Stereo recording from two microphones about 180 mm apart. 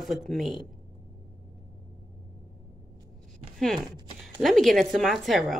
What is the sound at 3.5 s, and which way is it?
A woman's voice, centre (ahead or behind).